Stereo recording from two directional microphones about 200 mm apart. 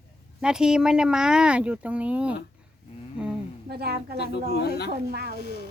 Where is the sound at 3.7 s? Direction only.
55° right (ahead or behind).